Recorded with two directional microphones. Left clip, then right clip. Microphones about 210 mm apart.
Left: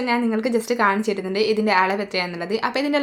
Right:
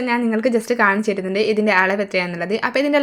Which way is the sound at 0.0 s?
10° right (ahead or behind).